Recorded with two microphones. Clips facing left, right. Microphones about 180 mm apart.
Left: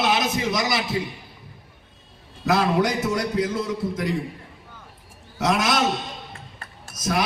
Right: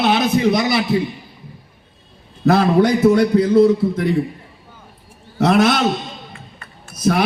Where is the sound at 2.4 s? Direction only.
60° right (ahead or behind).